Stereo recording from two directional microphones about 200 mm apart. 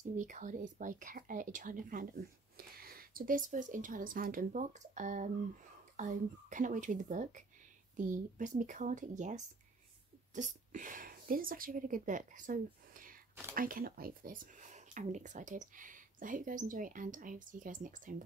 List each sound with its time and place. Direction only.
0.1 s speech: 40° right (ahead or behind)